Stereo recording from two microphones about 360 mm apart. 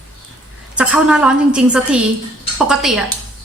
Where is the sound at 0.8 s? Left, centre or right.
Centre.